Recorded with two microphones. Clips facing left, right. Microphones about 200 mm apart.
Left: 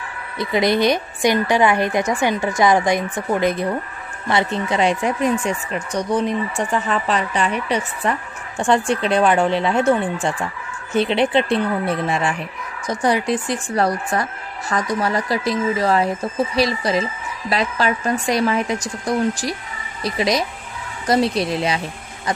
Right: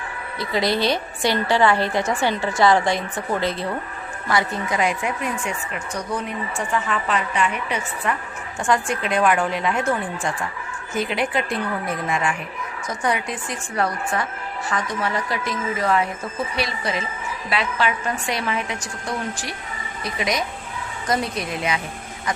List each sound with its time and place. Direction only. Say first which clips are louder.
0.4 s a woman's voice: left 4 dB; 20° left (ahead or behind)